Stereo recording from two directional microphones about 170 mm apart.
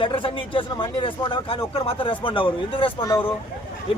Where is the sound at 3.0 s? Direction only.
15° left (ahead or behind).